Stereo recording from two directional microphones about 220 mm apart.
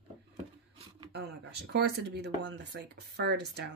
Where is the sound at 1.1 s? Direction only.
50° right (ahead or behind).